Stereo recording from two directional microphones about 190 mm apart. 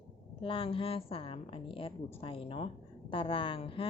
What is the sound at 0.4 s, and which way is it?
Speech, 25° left (ahead or behind).